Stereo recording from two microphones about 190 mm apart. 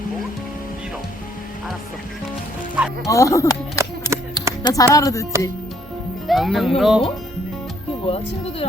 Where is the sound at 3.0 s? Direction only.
15° left (ahead or behind).